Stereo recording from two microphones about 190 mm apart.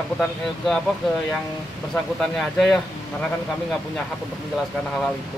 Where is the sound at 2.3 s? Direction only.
Centre (ahead or behind).